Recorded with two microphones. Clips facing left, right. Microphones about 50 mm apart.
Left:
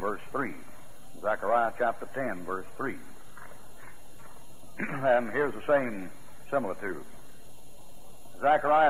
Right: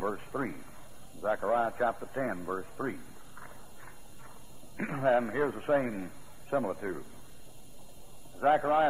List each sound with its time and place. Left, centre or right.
0.1 s a sound: centre
1.2 s a man's voice: centre
4.7 s a man's voice: left
8.4 s a man's voice: centre